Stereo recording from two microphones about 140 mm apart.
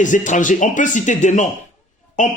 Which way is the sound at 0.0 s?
65° left (ahead or behind).